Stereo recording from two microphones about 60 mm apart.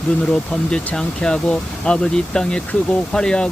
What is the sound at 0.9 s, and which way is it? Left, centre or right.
Speech, centre.